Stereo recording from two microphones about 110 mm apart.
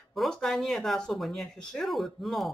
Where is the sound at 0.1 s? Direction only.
Centre (ahead or behind).